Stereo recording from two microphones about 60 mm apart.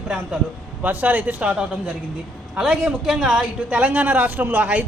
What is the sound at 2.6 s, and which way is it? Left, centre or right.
Speech, centre.